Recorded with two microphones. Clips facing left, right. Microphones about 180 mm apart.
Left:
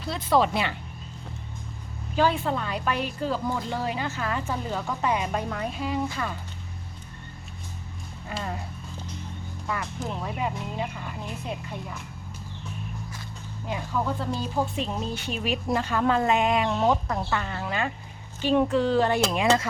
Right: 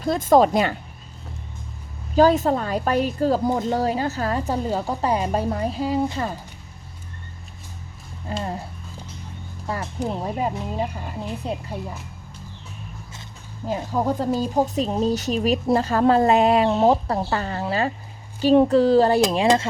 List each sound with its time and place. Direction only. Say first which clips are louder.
0.0 s speech: right 7 dB; 45° right (ahead or behind)
2.1 s a woman's voice: right 7 dB; 40° right (ahead or behind)
8.3 s speech: right 5 dB; 30° right (ahead or behind)
9.6 s a woman's voice: right 5 dB; 35° right (ahead or behind)
13.7 s a woman's voice: right 6 dB; 40° right (ahead or behind)